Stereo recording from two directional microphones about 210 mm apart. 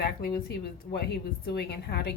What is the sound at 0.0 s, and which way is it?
A woman's voice, 50° left (ahead or behind).